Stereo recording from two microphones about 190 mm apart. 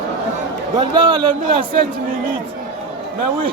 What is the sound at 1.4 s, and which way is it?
Speech, 40° right (ahead or behind).